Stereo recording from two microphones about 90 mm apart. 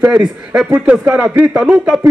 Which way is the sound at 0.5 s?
15° right (ahead or behind).